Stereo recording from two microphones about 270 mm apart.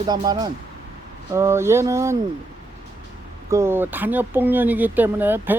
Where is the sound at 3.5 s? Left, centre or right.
Centre.